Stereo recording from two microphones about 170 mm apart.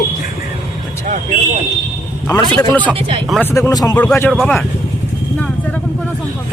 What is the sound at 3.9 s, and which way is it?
Speech, 10° left (ahead or behind).